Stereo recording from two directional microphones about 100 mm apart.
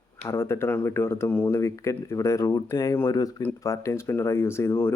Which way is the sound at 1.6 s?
30° left (ahead or behind).